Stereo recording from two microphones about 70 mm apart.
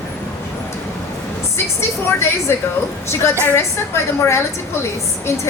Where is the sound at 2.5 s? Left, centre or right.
Left.